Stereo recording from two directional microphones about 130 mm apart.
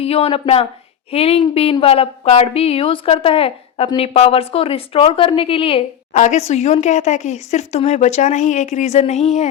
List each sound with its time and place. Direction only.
0.0 s a woman's voice: 50° left (ahead or behind)
6.1 s speech: 65° left (ahead or behind)